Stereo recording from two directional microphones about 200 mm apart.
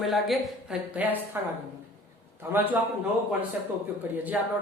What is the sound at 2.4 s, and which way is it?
Speech, 10° right (ahead or behind).